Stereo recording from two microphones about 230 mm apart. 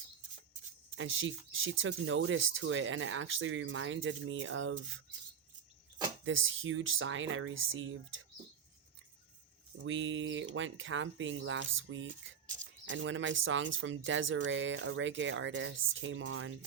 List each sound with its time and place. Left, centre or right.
0.9 s speech: right
6.2 s speech: right
9.8 s speech: right